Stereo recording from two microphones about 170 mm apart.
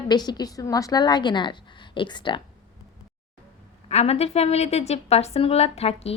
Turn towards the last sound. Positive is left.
turn(degrees=35)  # may be behind; listen again after turning